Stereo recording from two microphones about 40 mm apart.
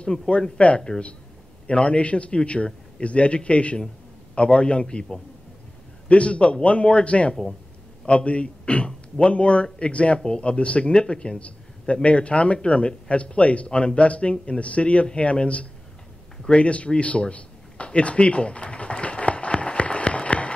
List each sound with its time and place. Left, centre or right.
0.7 s speech: centre
1.7 s a man's voice: left
6.0 s a man's voice: left
16.4 s a sound: left